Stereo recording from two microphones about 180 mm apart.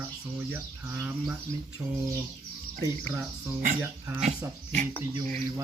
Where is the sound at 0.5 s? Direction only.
10° right (ahead or behind).